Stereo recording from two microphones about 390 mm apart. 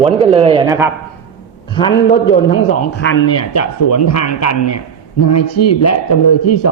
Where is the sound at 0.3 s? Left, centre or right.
Centre.